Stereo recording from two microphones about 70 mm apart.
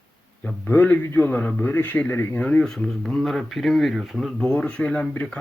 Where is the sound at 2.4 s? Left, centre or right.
Centre.